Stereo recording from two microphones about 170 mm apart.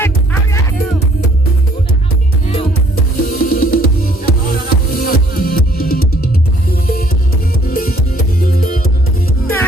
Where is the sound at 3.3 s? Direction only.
55° left (ahead or behind).